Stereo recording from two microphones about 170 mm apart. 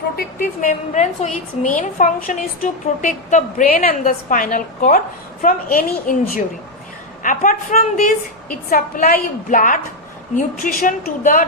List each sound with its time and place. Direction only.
0.2 s a woman's voice: 55° left (ahead or behind)
8.7 s a woman's voice: 65° left (ahead or behind)
9.5 s a woman's voice: 50° left (ahead or behind)